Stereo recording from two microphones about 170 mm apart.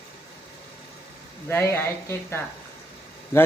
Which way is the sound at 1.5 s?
15° left (ahead or behind).